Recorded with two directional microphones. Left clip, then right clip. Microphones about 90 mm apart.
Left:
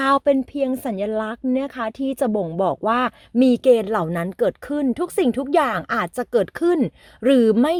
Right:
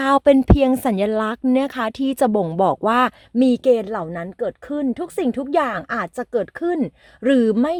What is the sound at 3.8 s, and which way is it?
Speech, 35° left (ahead or behind).